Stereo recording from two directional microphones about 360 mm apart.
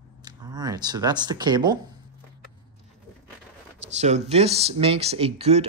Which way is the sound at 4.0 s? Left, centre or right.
Centre.